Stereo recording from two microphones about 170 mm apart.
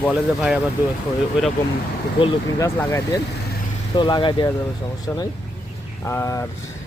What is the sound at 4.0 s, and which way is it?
Speech, 25° left (ahead or behind).